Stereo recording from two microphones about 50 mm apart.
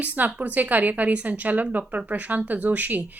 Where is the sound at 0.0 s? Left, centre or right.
Right.